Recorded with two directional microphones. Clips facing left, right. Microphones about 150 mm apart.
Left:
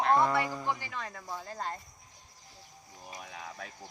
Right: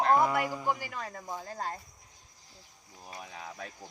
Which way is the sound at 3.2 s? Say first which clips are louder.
Right 1 dB; centre (ahead or behind).